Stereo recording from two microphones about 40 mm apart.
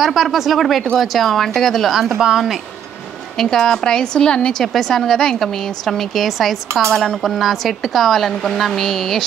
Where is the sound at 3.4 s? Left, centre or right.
Centre.